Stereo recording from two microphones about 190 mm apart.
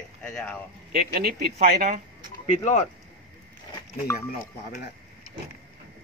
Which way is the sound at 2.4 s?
40° left (ahead or behind).